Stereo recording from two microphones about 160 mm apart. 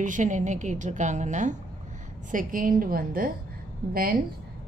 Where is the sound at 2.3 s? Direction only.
60° right (ahead or behind).